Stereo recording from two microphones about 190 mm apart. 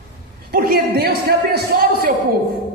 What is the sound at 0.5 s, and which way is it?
Speech, 50° right (ahead or behind).